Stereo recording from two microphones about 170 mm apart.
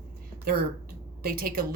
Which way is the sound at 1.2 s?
60° right (ahead or behind).